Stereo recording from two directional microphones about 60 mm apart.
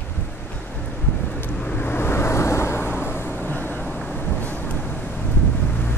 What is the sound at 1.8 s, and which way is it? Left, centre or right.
Vehicle, left.